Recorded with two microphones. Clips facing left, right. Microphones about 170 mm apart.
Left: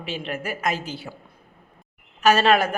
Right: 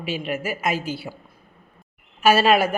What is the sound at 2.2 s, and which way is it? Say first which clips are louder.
Speech: right 1 dB; 10° right (ahead or behind).